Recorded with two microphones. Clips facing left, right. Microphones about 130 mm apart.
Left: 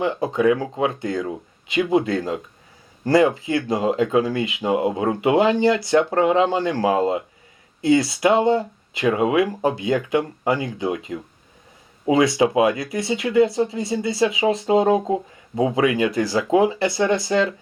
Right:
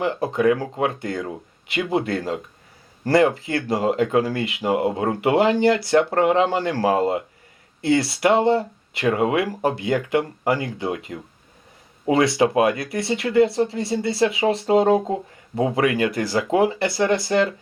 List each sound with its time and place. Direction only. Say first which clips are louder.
0.0 s speech: left 1 dB; 20° left (ahead or behind)
12.5 s speech: left 1 dB; 20° left (ahead or behind)